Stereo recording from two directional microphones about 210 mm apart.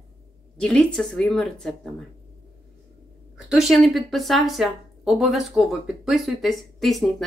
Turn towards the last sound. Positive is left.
turn(degrees=0)  # may be behind; listen again after turning